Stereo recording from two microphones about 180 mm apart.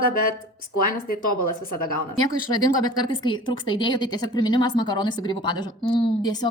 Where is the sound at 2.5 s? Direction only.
25° left (ahead or behind).